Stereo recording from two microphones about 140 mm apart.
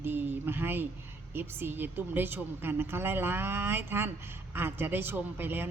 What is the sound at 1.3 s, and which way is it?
Speech, 15° right (ahead or behind).